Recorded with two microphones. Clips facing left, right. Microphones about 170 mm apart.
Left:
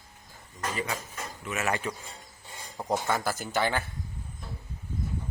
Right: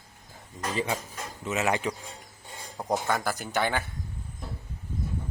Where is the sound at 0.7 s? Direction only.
25° right (ahead or behind).